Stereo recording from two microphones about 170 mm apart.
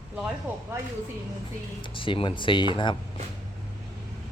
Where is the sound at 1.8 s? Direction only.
30° left (ahead or behind).